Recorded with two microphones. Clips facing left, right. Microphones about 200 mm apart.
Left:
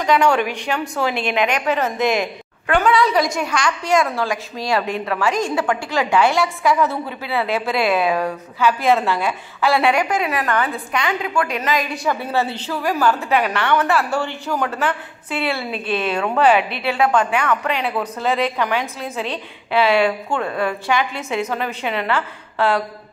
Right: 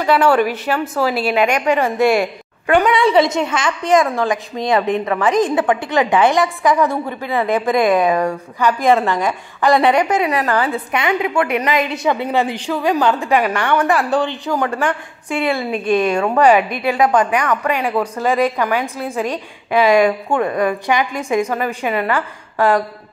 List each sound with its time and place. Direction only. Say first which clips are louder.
0.0 s speech: right 3 dB; 5° right (ahead or behind)
3.0 s a woman's voice: right 4 dB; 25° right (ahead or behind)
11.4 s a woman's voice: right 4 dB; 65° right (ahead or behind)
11.9 s speech: right 4 dB; 20° right (ahead or behind)
16.5 s a woman's voice: right 3 dB; 45° right (ahead or behind)
16.9 s speech: right 3 dB; 15° right (ahead or behind)